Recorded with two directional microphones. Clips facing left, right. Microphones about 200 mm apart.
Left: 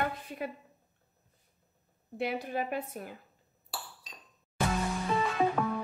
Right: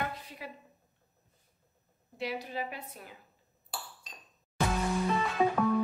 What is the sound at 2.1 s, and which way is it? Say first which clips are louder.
A woman's voice: left 3 dB; 55° left (ahead or behind).